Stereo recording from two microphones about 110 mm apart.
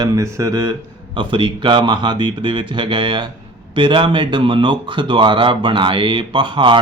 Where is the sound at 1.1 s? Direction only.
45° right (ahead or behind).